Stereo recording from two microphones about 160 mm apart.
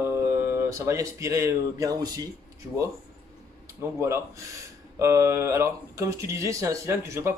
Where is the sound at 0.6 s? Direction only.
20° right (ahead or behind).